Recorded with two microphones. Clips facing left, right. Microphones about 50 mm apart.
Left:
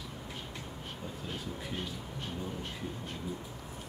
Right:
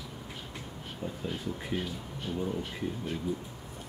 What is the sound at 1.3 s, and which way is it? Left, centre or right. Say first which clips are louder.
Speech: right 4 dB; centre.